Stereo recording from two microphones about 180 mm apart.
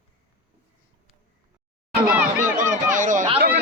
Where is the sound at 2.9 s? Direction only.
45° right (ahead or behind).